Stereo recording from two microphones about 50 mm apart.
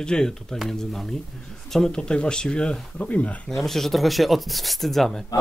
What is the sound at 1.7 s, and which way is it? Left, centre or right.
Speech, centre.